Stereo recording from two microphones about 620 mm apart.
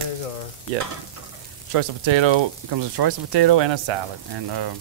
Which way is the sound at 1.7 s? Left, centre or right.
Right.